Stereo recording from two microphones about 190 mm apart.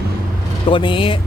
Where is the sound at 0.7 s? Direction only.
25° left (ahead or behind).